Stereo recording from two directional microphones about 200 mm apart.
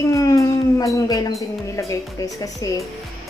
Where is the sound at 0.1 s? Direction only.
15° left (ahead or behind).